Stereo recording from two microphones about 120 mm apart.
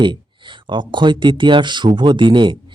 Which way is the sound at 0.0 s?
40° right (ahead or behind).